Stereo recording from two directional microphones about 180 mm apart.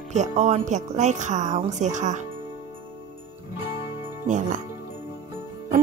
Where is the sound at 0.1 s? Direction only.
40° right (ahead or behind).